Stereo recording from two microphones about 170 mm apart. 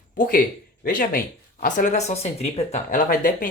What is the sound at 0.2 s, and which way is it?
Speech, 55° left (ahead or behind).